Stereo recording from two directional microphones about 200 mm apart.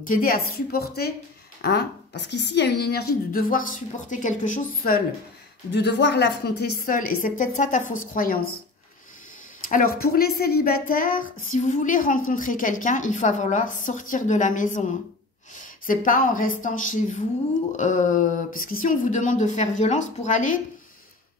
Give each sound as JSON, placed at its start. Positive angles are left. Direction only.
{"t": 0.0, "sound": "a woman's voice", "side_deg": 45}
{"t": 5.7, "sound": "a woman's voice", "side_deg": 55}
{"t": 9.9, "sound": "a woman's voice", "side_deg": 50}